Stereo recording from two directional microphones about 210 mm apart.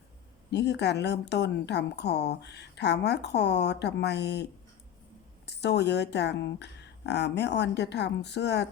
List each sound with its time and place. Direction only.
0.5 s speech: 55° left (ahead or behind)
5.5 s speech: 55° left (ahead or behind)